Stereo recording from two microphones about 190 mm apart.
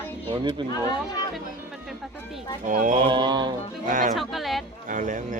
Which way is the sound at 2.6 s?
45° right (ahead or behind).